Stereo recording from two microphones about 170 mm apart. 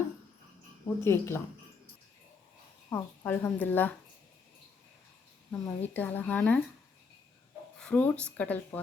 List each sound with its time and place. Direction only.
1.0 s speech: 15° left (ahead or behind)
2.9 s speech: 15° left (ahead or behind)
5.5 s speech: 10° left (ahead or behind)
7.8 s speech: 5° left (ahead or behind)